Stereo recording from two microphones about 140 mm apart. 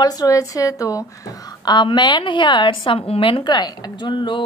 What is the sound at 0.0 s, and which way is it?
A woman's voice, 25° left (ahead or behind).